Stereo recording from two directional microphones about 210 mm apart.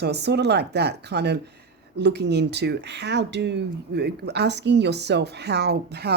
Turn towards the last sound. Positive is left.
turn(degrees=-50)  # may be behind; listen again after turning